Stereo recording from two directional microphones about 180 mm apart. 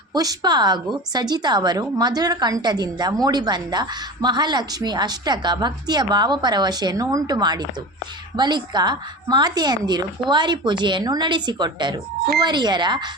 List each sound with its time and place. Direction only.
0.1 s speech: 20° right (ahead or behind)